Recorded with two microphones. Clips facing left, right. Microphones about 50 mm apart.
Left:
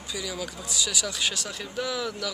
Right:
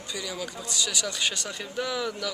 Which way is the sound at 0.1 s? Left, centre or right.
Centre.